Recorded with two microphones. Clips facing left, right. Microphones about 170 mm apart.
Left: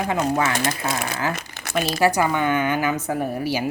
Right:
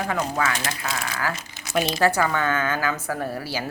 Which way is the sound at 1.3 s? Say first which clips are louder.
Left 3 dB; 55° left (ahead or behind).